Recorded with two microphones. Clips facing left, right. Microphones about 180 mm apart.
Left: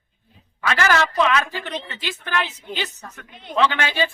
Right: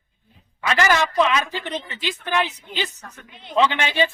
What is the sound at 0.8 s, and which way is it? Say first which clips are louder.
Speech: even; 15° right (ahead or behind).